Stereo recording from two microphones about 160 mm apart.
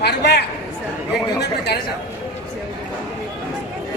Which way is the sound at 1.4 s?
90° left.